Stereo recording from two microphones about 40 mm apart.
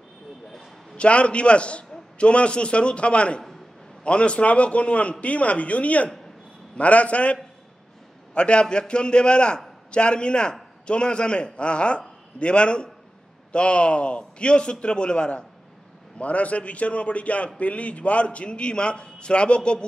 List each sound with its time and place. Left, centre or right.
0.9 s a man's voice: left
8.4 s a man's voice: left